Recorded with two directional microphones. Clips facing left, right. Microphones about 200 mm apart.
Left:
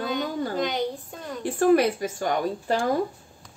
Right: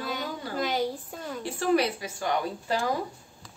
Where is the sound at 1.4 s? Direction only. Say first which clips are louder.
Left 6 dB; 50° left (ahead or behind).